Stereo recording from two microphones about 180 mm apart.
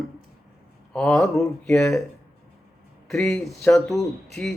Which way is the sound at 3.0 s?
5° left (ahead or behind).